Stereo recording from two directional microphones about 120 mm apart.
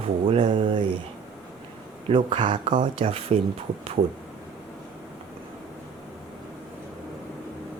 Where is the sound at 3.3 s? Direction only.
50° right (ahead or behind).